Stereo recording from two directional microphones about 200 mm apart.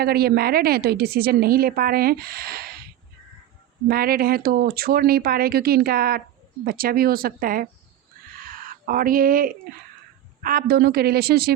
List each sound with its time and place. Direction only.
0.0 s speech: 50° right (ahead or behind)
3.8 s speech: 50° right (ahead or behind)
8.4 s a sound: 45° right (ahead or behind)
10.4 s speech: 50° right (ahead or behind)